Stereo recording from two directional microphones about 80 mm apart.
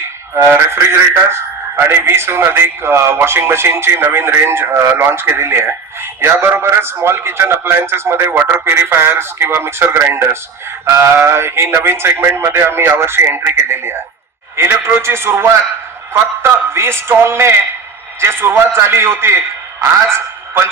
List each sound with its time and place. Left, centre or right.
0.3 s a man's voice: right